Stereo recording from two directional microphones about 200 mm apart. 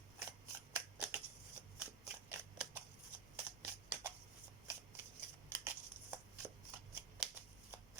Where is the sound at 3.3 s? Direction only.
10° right (ahead or behind).